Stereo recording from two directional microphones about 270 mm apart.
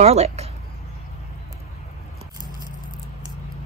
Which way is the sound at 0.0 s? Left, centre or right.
Right.